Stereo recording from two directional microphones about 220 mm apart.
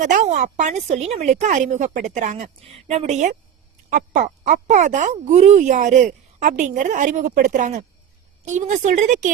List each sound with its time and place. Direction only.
0.0 s speech: 35° right (ahead or behind)